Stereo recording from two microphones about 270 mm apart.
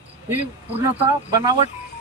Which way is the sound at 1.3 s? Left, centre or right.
Centre.